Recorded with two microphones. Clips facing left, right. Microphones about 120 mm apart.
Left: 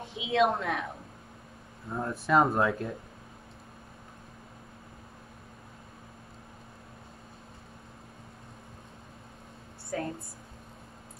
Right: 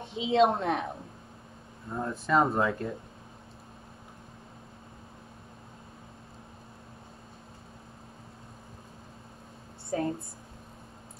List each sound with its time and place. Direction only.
0.0 s speech: 25° right (ahead or behind)
1.9 s speech: 5° left (ahead or behind)
9.8 s speech: 25° right (ahead or behind)